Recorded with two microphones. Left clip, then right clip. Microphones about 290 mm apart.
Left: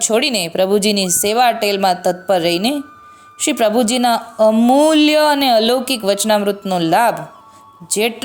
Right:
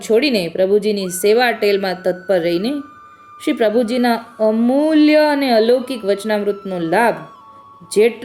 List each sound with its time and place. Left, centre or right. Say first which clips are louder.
0.0 s speech: right 1 dB; left